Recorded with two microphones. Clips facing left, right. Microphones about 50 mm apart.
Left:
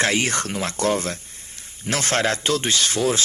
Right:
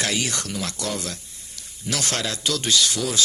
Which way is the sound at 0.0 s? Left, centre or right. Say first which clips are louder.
Left 5 dB; left.